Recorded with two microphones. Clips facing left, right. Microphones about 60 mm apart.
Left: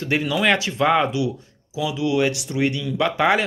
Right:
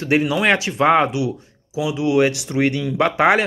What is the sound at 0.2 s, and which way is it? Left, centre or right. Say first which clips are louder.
Speech: right 2 dB; centre.